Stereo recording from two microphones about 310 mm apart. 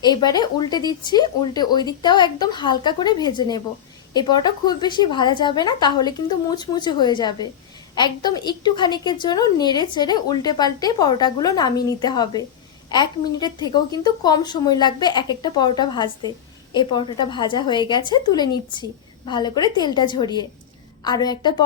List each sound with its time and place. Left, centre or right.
0.0 s a woman's voice: centre